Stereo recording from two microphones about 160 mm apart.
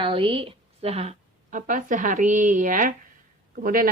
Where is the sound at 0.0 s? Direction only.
35° right (ahead or behind).